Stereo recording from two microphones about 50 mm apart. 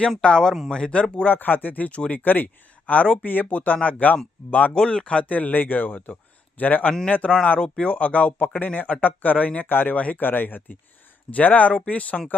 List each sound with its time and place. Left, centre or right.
0.2 s speech: centre
1.2 s speech: left
4.7 s speech: centre
5.2 s speech: left